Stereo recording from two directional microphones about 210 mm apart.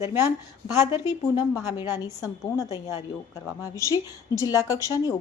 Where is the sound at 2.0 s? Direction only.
15° left (ahead or behind).